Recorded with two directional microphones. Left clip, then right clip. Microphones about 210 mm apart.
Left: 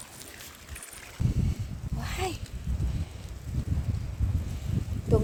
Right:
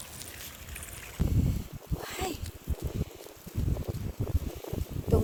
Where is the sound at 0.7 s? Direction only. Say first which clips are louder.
Left 1 dB; 35° right (ahead or behind).